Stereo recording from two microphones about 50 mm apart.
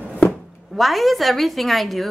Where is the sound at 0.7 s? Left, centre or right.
Centre.